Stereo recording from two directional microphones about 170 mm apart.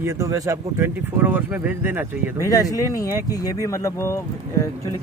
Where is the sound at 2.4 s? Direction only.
20° left (ahead or behind).